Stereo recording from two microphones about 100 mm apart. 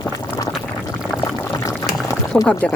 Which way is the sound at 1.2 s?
35° left (ahead or behind).